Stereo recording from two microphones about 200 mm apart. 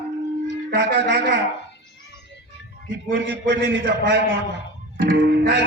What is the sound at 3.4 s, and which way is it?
A man's voice, 45° right (ahead or behind).